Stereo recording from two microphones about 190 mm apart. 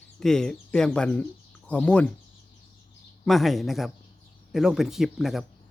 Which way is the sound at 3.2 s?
Centre (ahead or behind).